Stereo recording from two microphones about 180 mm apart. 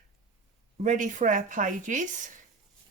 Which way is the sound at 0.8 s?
45° right (ahead or behind).